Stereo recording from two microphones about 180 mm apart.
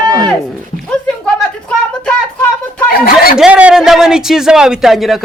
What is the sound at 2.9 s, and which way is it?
Speech, 55° left (ahead or behind).